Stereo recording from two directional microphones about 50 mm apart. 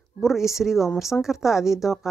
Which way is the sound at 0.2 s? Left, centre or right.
Centre.